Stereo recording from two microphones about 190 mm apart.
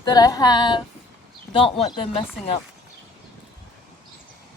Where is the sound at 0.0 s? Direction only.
20° left (ahead or behind).